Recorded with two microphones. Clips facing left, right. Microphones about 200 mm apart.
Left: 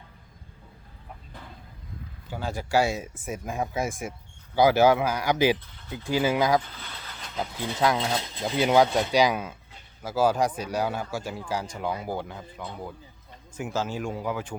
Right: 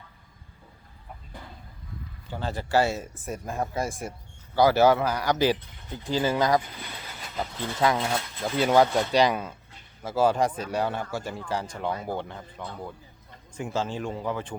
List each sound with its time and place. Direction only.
2.3 s speech: 10° left (ahead or behind)
4.7 s speech: 15° left (ahead or behind)
6.6 s pigeon: 15° right (ahead or behind)
7.3 s speech: 10° left (ahead or behind)
7.8 s speech: 5° right (ahead or behind)
8.2 s speech: 15° left (ahead or behind)